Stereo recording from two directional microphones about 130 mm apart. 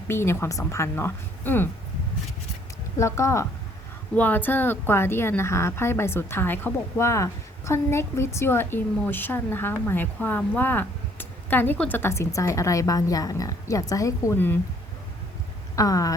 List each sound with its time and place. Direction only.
0.1 s speech: 20° left (ahead or behind)
3.0 s speech: 20° left (ahead or behind)
15.7 s speech: 25° left (ahead or behind)